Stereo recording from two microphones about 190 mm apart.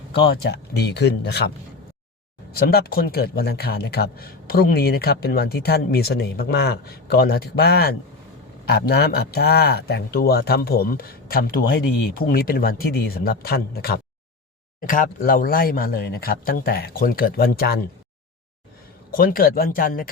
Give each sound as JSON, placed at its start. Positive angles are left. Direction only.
{"t": 0.1, "sound": "speech", "side_deg": 60}
{"t": 19.1, "sound": "speech", "side_deg": 50}